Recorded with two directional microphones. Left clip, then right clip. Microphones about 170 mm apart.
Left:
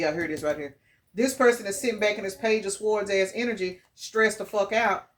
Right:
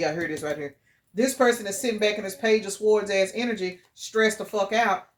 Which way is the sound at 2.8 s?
30° right (ahead or behind).